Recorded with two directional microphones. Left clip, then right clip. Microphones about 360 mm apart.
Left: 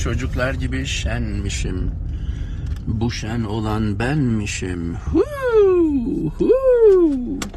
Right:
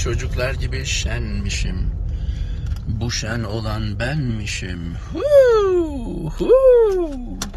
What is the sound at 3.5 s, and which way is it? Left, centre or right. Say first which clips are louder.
Speech: left 4 dB; centre.